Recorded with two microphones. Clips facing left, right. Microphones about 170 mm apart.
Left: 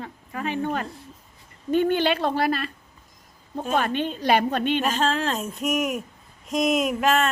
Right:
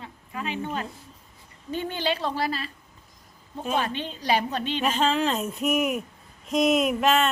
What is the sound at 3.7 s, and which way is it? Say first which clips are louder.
Speech: left 5 dB; 55° left (ahead or behind).